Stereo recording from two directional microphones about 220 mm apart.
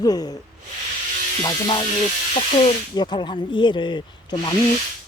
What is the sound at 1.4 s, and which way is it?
Speech, 20° left (ahead or behind).